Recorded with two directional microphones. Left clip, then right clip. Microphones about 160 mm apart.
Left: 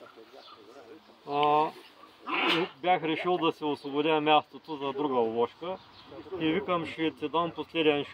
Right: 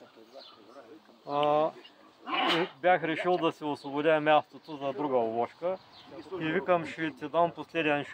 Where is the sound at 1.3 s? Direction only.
20° right (ahead or behind).